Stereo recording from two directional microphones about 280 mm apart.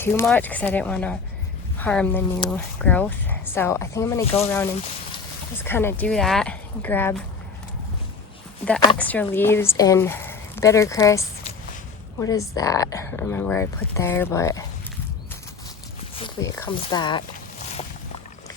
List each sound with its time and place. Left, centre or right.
0.0 s speech: centre
4.2 s speech: left
5.6 s speech: centre
9.0 s speech: centre
16.1 s a sound: centre